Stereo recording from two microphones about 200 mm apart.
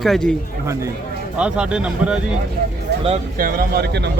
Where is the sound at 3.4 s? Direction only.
45° right (ahead or behind).